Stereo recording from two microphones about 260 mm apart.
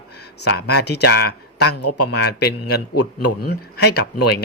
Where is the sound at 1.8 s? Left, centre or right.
Left.